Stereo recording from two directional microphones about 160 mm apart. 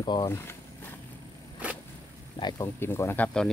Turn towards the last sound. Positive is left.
turn(degrees=5)  # may be behind; listen again after turning